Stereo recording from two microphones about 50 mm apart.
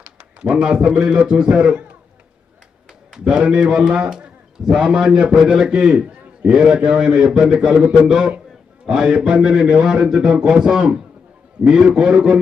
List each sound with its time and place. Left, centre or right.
0.0 s a man's voice: right
3.1 s a man's voice: centre